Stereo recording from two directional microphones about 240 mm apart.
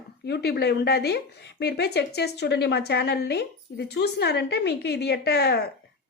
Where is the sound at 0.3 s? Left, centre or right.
Left.